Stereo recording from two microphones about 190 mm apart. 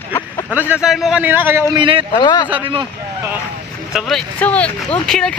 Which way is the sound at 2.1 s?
20° left (ahead or behind).